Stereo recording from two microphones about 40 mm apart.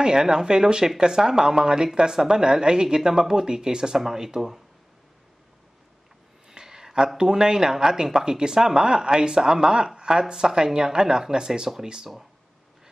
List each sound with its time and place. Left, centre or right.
0.0 s speech: centre
6.5 s a sound: centre
7.2 s speech: centre